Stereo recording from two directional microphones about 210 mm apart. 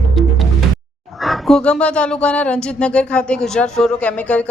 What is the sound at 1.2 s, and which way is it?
Speech, centre (ahead or behind).